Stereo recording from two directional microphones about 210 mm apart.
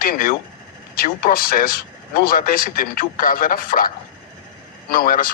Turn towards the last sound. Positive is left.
turn(degrees=45)  # may be behind; listen again after turning